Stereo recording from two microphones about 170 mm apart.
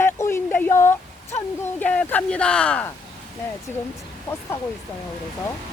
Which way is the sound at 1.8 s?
10° left (ahead or behind).